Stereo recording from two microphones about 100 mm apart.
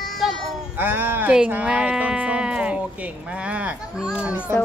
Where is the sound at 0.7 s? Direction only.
20° right (ahead or behind).